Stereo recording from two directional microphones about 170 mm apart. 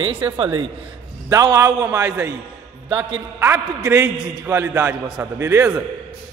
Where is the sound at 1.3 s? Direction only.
20° right (ahead or behind).